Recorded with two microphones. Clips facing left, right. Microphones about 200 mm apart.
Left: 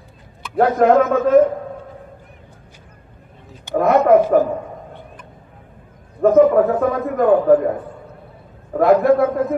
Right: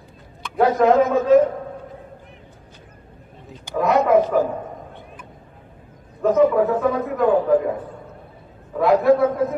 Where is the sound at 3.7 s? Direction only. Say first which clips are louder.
Left 4 dB; 55° left (ahead or behind).